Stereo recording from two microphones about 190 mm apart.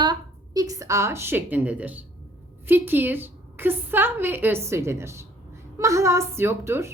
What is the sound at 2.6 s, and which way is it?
A woman's voice, 10° right (ahead or behind).